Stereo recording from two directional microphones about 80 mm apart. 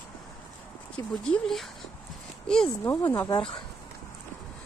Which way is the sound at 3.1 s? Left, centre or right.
Left.